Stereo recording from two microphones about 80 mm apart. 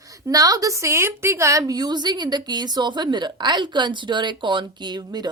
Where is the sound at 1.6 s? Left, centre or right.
Right.